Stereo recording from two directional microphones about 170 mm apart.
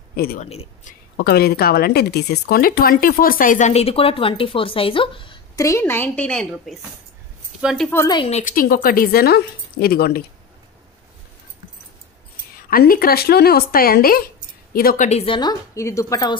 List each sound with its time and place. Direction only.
0.1 s speech: 65° left (ahead or behind)
0.4 s speech: 40° left (ahead or behind)
1.1 s speech: 70° left (ahead or behind); by 5.4 s 30° left (ahead or behind)
5.6 s a woman's voice: 15° left (ahead or behind); by 7.9 s centre (ahead or behind)
7.9 s a woman's voice: 15° left (ahead or behind)
8.2 s speech: 40° left (ahead or behind); by 10.2 s 65° left (ahead or behind)
12.6 s speech: 60° left (ahead or behind)
15.0 s speech: 35° left (ahead or behind)
15.7 s a woman's voice: 15° left (ahead or behind)